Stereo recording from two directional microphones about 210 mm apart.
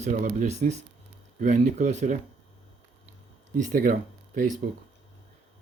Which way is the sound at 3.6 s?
40° right (ahead or behind).